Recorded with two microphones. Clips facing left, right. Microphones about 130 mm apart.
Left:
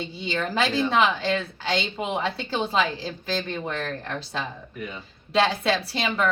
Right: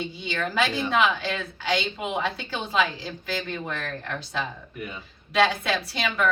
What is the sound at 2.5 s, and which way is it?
Speech, 35° left (ahead or behind).